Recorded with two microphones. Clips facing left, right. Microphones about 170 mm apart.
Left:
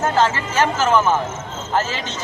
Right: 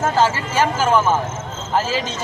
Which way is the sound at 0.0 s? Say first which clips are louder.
Even; 5° right (ahead or behind).